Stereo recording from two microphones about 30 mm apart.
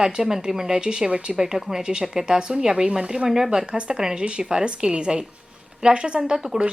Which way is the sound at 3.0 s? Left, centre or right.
Right.